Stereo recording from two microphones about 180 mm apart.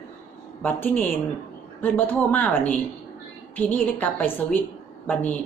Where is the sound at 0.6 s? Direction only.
10° left (ahead or behind).